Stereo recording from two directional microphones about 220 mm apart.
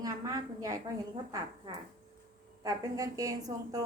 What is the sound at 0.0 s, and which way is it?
A woman's voice, 15° right (ahead or behind).